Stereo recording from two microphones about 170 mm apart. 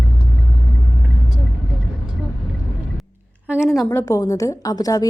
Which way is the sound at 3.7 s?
Centre (ahead or behind).